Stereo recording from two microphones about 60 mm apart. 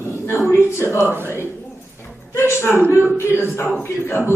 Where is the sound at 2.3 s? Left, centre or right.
Left.